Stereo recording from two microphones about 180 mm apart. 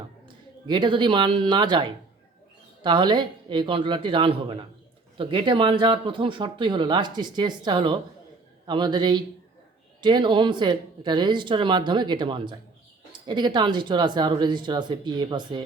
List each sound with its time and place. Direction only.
0.7 s speech: 25° right (ahead or behind)